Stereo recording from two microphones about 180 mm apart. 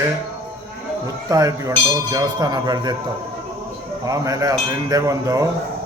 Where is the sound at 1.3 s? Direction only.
20° right (ahead or behind).